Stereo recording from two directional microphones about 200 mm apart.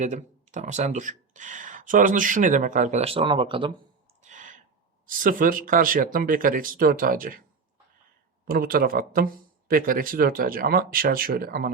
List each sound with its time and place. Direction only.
0.0 s speech: 35° right (ahead or behind)
4.2 s a sound: 40° right (ahead or behind)
5.0 s speech: 45° right (ahead or behind)
8.4 s speech: 45° right (ahead or behind)